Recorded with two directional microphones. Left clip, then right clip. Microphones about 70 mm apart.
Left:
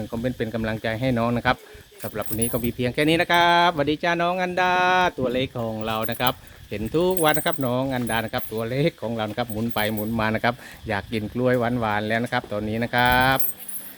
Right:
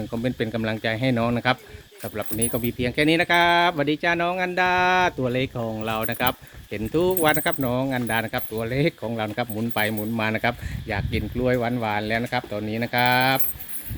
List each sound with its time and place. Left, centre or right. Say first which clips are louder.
0.2 s speech: right 1 dB; right
0.5 s speech: right 1 dB; centre
2.0 s speech: even; centre
10.2 s speech: left 1 dB; left
10.8 s speech: left 1 dB; left
11.3 s speech: left 2 dB; centre